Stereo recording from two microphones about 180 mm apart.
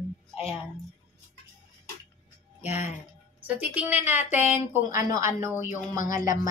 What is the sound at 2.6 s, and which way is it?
Speech, 10° right (ahead or behind).